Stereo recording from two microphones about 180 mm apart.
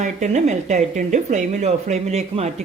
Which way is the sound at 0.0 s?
40° right (ahead or behind).